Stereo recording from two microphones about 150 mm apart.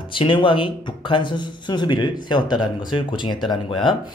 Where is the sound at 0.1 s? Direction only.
35° left (ahead or behind).